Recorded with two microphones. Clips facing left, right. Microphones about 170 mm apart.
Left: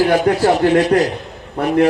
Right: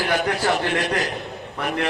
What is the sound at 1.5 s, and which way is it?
Speech, 35° left (ahead or behind).